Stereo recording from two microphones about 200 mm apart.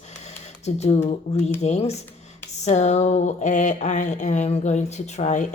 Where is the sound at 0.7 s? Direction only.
35° left (ahead or behind).